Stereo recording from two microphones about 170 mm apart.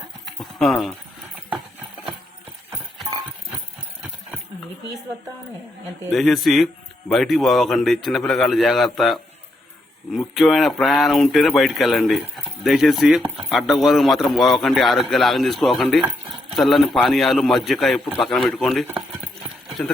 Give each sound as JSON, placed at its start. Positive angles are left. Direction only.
{"t": 0.3, "sound": "clip-clop", "side_deg": 0}
{"t": 6.1, "sound": "speech", "side_deg": 0}